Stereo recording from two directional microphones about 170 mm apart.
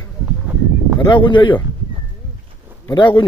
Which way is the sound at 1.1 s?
30° left (ahead or behind).